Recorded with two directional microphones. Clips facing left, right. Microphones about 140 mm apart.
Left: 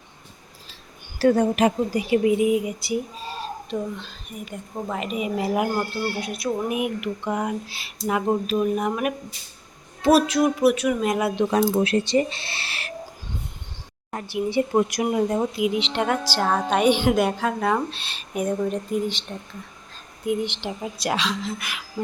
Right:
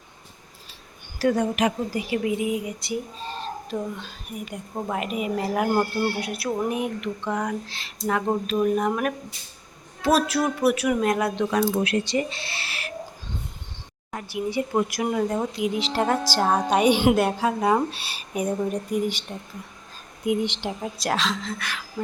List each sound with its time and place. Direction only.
1.2 s a woman's voice: 35° left (ahead or behind)
1.9 s speech: 20° left (ahead or behind)
2.8 s speech: 5° left (ahead or behind)
3.9 s a sound: 10° right (ahead or behind)
5.7 s speech: 10° right (ahead or behind)
6.7 s speech: 10° left (ahead or behind)
10.2 s a sound: centre (ahead or behind)
11.5 s speech: 30° left (ahead or behind)
14.1 s speech: 30° left (ahead or behind)
15.4 s speech: 10° left (ahead or behind)
16.2 s speech: 15° right (ahead or behind)
20.2 s speech: 15° right (ahead or behind)
20.7 s a sound: centre (ahead or behind)